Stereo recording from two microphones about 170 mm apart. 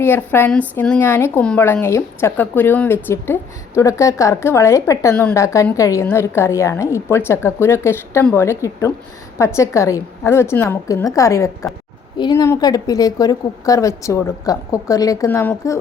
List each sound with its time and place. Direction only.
0.0 s a woman's voice: 15° left (ahead or behind)